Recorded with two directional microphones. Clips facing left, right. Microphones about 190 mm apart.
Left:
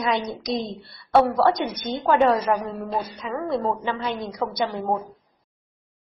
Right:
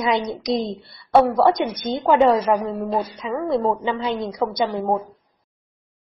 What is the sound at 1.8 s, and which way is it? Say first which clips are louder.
Speech: right 3 dB; 20° right (ahead or behind).